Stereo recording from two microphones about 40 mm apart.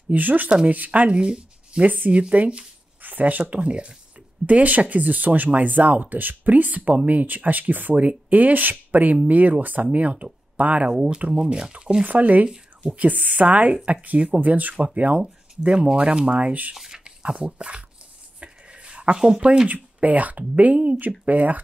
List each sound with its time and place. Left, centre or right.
0.1 s speech: right
1.1 s speech: right
3.0 s speech: right
7.9 s speech: right
10.9 s speech: right
12.0 s speech: right
14.0 s speech: right
14.4 s speech: right
16.7 s speech: centre
17.0 s speech: right
18.4 s a sound: right
19.1 s speech: centre
19.7 s speech: right